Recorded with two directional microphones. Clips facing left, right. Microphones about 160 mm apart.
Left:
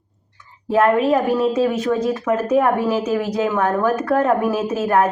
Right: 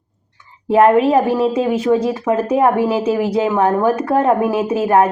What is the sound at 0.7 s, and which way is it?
A woman's voice, 25° right (ahead or behind).